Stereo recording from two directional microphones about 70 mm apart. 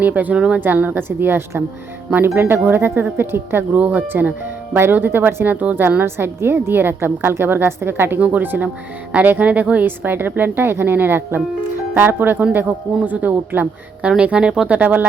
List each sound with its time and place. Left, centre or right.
0.0 s a woman's voice: right
0.6 s a woman's voice: right